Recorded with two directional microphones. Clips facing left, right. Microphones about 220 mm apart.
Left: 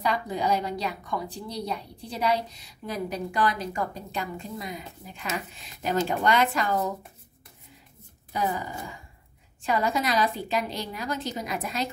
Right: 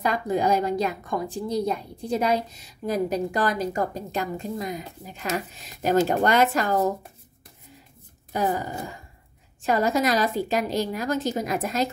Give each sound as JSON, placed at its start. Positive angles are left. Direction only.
{"t": 0.0, "sound": "a woman's voice", "side_deg": -45}
{"t": 8.3, "sound": "a woman's voice", "side_deg": -45}